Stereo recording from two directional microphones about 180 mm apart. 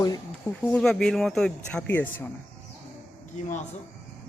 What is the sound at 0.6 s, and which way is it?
Speech, 5° left (ahead or behind).